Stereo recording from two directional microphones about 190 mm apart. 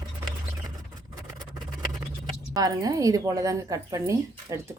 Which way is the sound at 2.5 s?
20° right (ahead or behind).